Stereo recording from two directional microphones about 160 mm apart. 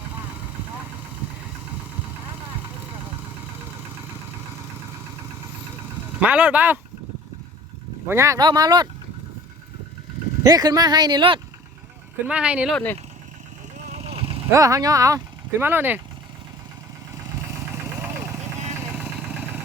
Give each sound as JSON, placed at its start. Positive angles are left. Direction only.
{"t": 6.1, "sound": "speech", "side_deg": -10}
{"t": 8.0, "sound": "speech", "side_deg": -15}
{"t": 10.4, "sound": "speech", "side_deg": -25}
{"t": 12.2, "sound": "speech", "side_deg": -5}
{"t": 12.7, "sound": "speech", "side_deg": 10}
{"t": 13.8, "sound": "vehicle", "side_deg": -40}
{"t": 14.5, "sound": "speech", "side_deg": -20}
{"t": 18.0, "sound": "vehicle", "side_deg": -15}